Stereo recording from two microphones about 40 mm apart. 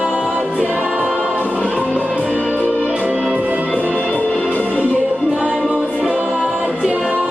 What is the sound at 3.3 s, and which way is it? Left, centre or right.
Music, right.